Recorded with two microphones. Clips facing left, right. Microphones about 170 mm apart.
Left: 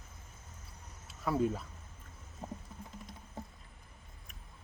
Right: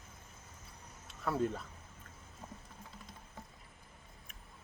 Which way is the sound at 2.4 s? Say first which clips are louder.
Left 7 dB; 35° left (ahead or behind).